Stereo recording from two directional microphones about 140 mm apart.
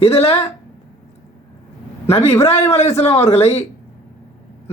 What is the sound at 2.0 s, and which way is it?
Speech, 45° left (ahead or behind).